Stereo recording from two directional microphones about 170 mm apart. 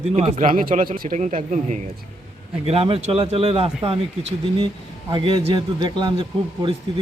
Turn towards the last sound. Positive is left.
turn(degrees=-25)  # may be behind; listen again after turning